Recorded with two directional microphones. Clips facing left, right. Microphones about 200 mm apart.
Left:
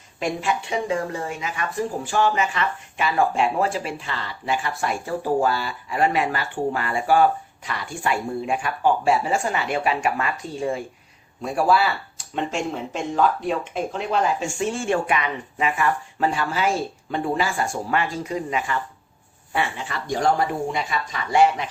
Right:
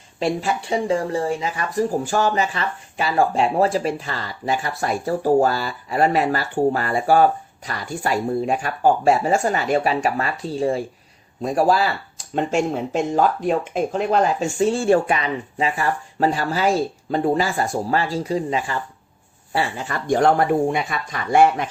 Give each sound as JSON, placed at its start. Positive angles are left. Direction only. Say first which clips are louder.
{"t": 0.2, "sound": "speech", "louder": "right 3 dB", "side_deg": -30}